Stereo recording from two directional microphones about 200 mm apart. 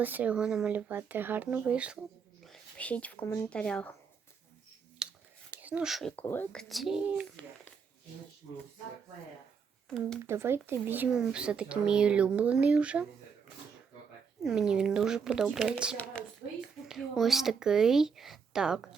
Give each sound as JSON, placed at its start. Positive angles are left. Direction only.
{"t": 0.0, "sound": "speech", "side_deg": -10}
{"t": 5.0, "sound": "whispering", "side_deg": -5}
{"t": 5.6, "sound": "speech", "side_deg": -5}
{"t": 9.9, "sound": "speech", "side_deg": 5}
{"t": 10.2, "sound": "speech", "side_deg": -10}
{"t": 14.4, "sound": "speech", "side_deg": -5}